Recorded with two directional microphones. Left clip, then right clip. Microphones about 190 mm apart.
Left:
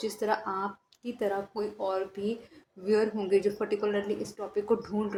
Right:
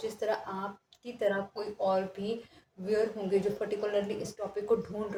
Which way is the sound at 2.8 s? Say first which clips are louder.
Left 3 dB; 30° left (ahead or behind).